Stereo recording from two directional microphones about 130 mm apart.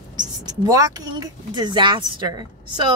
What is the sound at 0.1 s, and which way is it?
Speech, 30° right (ahead or behind).